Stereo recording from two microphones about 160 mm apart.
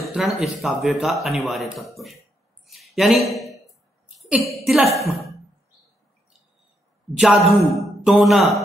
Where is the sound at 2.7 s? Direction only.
Centre (ahead or behind).